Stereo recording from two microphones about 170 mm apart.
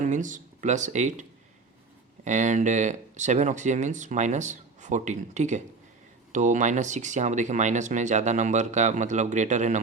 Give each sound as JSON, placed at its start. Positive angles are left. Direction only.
{"t": 0.0, "sound": "speech", "side_deg": -45}
{"t": 2.2, "sound": "speech", "side_deg": -45}